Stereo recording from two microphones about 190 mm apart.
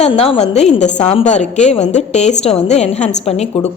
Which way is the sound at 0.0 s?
30° left (ahead or behind).